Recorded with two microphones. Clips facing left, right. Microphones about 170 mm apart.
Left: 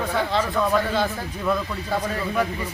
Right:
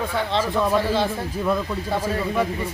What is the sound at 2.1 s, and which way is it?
Speech, 25° right (ahead or behind).